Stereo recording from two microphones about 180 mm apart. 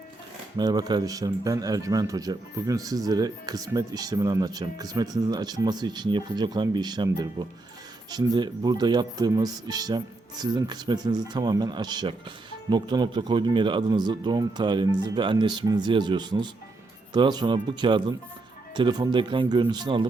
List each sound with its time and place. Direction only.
0.5 s speech: 20° right (ahead or behind)